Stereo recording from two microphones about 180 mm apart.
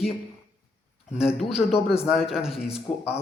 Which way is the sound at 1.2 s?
Centre (ahead or behind).